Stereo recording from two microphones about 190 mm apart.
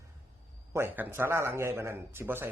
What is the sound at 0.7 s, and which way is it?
A man's voice, 10° right (ahead or behind).